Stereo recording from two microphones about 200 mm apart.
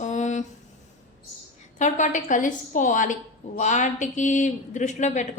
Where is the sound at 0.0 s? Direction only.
35° left (ahead or behind).